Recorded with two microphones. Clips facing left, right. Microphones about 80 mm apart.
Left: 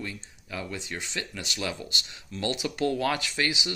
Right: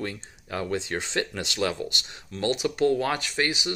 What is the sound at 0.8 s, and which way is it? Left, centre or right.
Speech, right.